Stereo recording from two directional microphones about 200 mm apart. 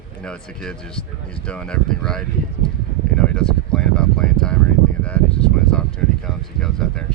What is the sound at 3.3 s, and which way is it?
Speech, 5° left (ahead or behind).